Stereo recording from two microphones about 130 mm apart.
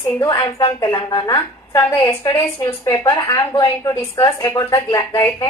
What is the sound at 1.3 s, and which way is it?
A woman's voice, 25° left (ahead or behind).